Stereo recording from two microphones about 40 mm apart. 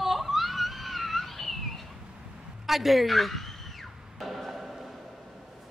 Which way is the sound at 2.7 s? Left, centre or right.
Centre.